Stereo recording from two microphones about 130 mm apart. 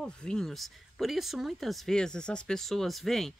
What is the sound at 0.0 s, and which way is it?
Speech, 5° left (ahead or behind).